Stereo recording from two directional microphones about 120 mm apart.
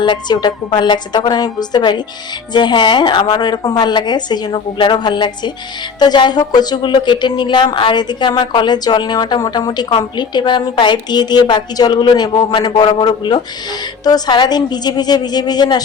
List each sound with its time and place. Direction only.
0.0 s speech: 40° left (ahead or behind)